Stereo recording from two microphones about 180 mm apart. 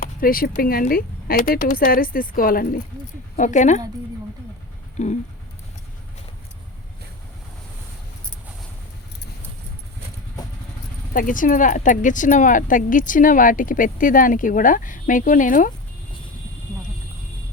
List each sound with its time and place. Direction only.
0.0 s speech: 55° left (ahead or behind)
3.3 s speech: 45° left (ahead or behind)
5.0 s a sound: 40° left (ahead or behind)
11.1 s speech: 50° left (ahead or behind)